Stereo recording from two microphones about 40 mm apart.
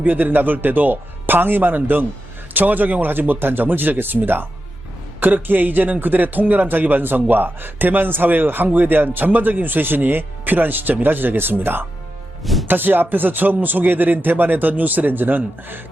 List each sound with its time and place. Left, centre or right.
0.0 s a man's voice: right
12.4 s music: centre
12.6 s a man's voice: right